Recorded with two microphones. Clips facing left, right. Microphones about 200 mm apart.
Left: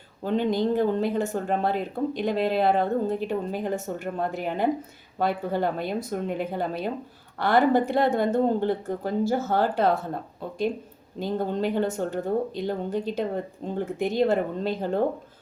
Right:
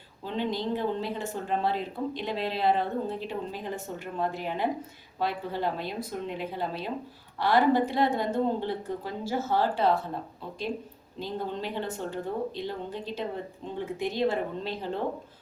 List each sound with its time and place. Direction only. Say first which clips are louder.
0.2 s speech: left 7 dB; 50° left (ahead or behind)
11.2 s speech: left 7 dB; 50° left (ahead or behind)